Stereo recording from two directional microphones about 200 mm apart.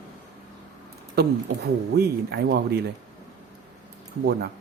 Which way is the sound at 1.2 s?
55° right (ahead or behind).